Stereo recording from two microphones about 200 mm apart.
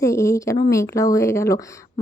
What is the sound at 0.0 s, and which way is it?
Speech, 15° left (ahead or behind).